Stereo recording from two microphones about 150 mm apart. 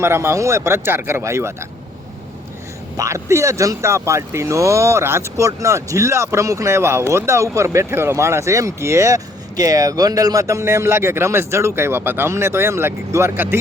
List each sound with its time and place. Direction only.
0.0 s speech: 15° right (ahead or behind)
3.0 s speech: 20° right (ahead or behind)